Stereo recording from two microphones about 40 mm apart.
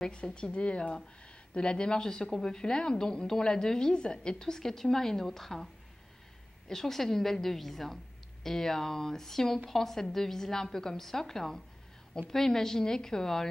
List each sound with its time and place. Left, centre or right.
0.0 s a woman's voice: left; by 5.7 s centre
6.7 s a woman's voice: centre